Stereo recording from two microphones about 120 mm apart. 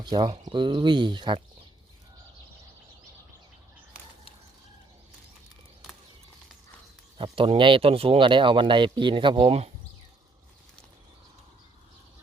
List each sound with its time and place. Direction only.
0.0 s speech: 35° right (ahead or behind)
7.2 s speech: 45° right (ahead or behind)